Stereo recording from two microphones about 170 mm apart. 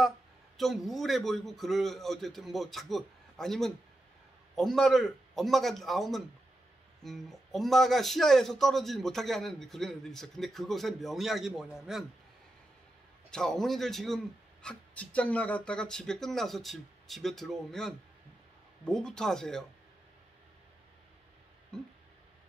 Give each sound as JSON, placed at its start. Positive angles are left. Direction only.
{"t": 0.6, "sound": "a man's voice", "side_deg": 0}
{"t": 13.3, "sound": "a man's voice", "side_deg": 5}
{"t": 21.7, "sound": "a man's voice", "side_deg": 5}